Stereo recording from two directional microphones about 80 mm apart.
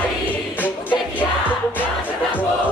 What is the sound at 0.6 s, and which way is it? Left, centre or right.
Music, left.